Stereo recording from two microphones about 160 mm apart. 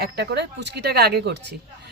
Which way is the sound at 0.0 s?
90° right.